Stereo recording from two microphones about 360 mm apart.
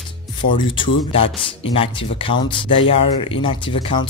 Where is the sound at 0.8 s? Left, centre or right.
Centre.